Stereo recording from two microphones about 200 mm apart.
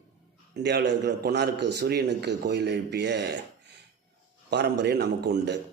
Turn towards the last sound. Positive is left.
turn(degrees=-60)  # may be behind; listen again after turning